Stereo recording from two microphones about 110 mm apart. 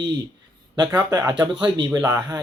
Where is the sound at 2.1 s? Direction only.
40° right (ahead or behind).